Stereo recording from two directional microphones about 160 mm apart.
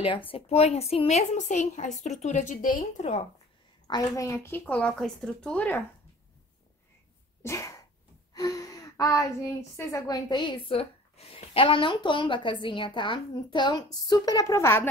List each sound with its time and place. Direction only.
0.0 s a woman's voice: 35° left (ahead or behind)
3.8 s a woman's voice: 20° left (ahead or behind); by 5.8 s 5° left (ahead or behind)
7.4 s sneeze: 20° left (ahead or behind)
8.3 s gasp: 20° left (ahead or behind)
9.8 s a woman's voice: 20° left (ahead or behind)